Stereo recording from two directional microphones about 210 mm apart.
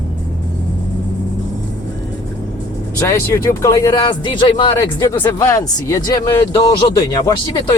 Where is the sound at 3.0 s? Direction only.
15° left (ahead or behind).